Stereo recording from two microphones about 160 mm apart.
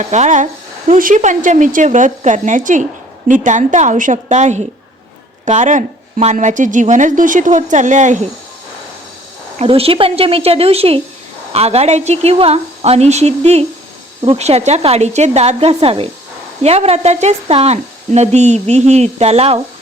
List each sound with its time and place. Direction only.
0.0 s a woman's voice: 45° right (ahead or behind)
9.6 s a woman's voice: 35° right (ahead or behind)